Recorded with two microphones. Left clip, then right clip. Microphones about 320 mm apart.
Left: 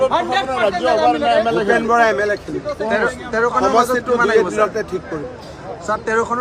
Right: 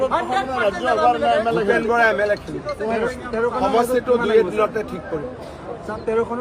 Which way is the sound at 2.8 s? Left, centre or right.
Left.